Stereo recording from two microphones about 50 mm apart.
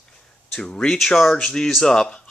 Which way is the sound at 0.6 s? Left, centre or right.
Centre.